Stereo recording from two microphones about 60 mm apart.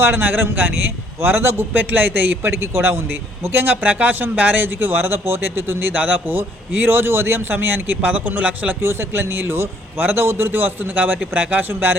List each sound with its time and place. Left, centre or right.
0.0 s a man's voice: right
2.5 s a man's voice: right
8.8 s a man's voice: right